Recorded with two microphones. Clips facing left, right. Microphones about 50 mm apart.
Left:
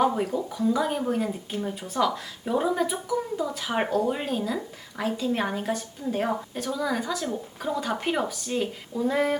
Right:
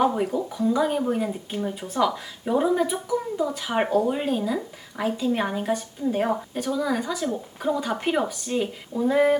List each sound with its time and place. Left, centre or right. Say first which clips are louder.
0.0 s speech: right 2 dB; centre